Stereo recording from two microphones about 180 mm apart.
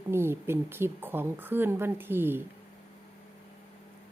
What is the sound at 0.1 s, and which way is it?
A woman's voice, 15° right (ahead or behind).